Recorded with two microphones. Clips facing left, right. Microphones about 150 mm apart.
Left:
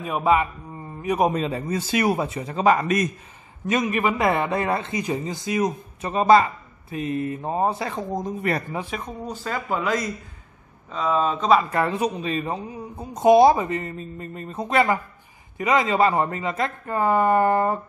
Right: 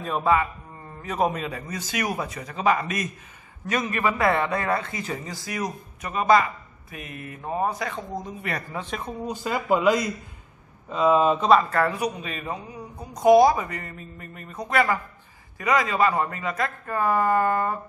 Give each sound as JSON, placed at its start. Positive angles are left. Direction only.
{"t": 0.0, "sound": "a man's voice", "side_deg": 15}
{"t": 1.3, "sound": "a man's voice", "side_deg": 30}
{"t": 3.6, "sound": "speech", "side_deg": 20}
{"t": 8.7, "sound": "speech", "side_deg": 5}
{"t": 9.0, "sound": "speech", "side_deg": -10}
{"t": 11.7, "sound": "speech", "side_deg": 20}